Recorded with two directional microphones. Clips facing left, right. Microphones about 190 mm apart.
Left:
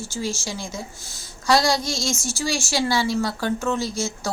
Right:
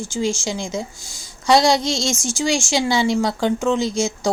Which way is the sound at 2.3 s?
15° right (ahead or behind).